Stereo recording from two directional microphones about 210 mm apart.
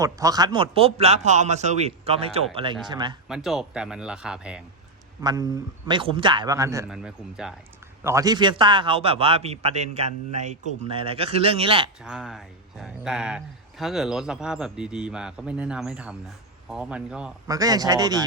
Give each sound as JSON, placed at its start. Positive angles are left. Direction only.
{"t": 0.0, "sound": "a man's voice", "side_deg": -15}
{"t": 3.2, "sound": "speech", "side_deg": 0}
{"t": 5.2, "sound": "a man's voice", "side_deg": -20}
{"t": 6.9, "sound": "speech", "side_deg": -5}
{"t": 8.0, "sound": "a man's voice", "side_deg": -15}
{"t": 12.0, "sound": "speech", "side_deg": 0}
{"t": 17.5, "sound": "a man's voice", "side_deg": -15}